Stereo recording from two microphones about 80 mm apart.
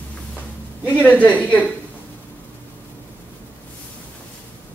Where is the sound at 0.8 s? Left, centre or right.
Centre.